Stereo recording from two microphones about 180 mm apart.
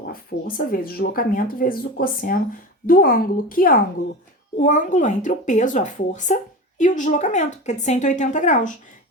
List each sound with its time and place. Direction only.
0.1 s speech: 55° left (ahead or behind)